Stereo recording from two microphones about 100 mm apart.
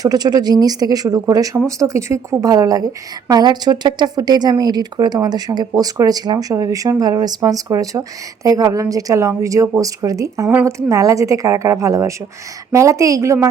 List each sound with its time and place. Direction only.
0.0 s a woman's voice: 40° right (ahead or behind)